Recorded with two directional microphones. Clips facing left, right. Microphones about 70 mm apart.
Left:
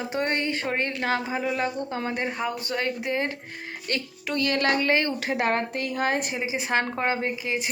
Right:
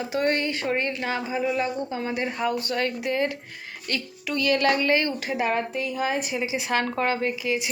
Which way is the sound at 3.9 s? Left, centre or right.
Left.